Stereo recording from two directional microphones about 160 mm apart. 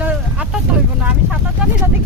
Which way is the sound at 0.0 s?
5° right (ahead or behind).